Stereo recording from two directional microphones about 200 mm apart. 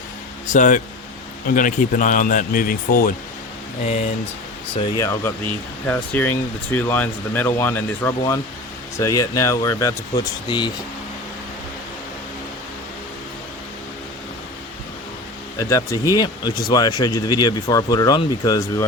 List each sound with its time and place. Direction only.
0.4 s speech: 40° left (ahead or behind)
5.0 s speech: 10° left (ahead or behind)
15.5 s speech: 15° left (ahead or behind)